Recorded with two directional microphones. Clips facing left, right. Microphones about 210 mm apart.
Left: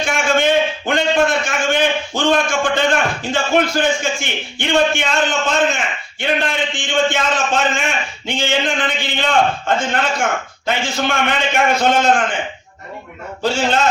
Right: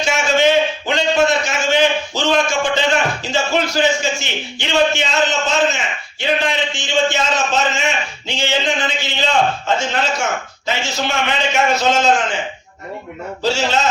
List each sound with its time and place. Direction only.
0.0 s a man's voice: 55° left (ahead or behind)
13.4 s a man's voice: 55° left (ahead or behind)